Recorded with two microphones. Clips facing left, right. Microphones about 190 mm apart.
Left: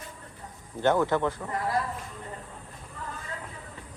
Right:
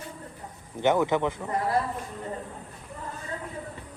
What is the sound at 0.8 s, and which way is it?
Speech, 15° right (ahead or behind).